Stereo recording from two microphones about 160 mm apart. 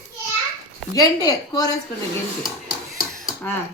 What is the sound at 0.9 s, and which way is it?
Speech, 20° left (ahead or behind).